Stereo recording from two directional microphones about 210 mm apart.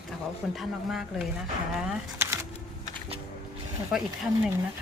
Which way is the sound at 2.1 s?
10° right (ahead or behind).